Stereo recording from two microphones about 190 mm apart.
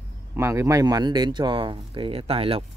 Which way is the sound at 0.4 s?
15° right (ahead or behind).